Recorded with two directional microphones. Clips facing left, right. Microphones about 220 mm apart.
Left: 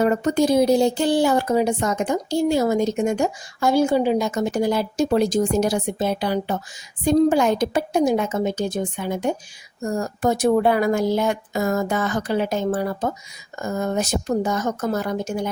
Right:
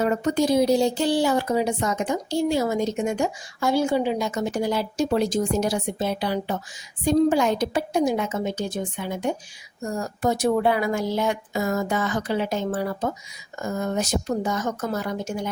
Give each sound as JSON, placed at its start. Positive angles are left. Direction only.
{"t": 0.0, "sound": "speech", "side_deg": 50}